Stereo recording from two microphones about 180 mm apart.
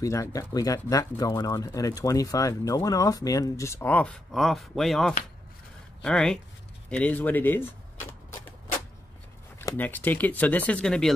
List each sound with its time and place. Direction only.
0.0 s speech: 20° left (ahead or behind)
9.6 s speech: 10° left (ahead or behind)